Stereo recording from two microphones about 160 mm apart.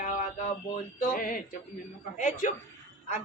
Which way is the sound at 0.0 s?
55° left (ahead or behind).